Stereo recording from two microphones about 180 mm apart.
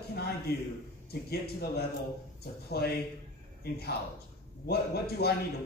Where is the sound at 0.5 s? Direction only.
60° left (ahead or behind).